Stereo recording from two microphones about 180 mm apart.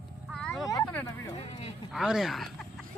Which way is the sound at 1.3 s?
35° left (ahead or behind).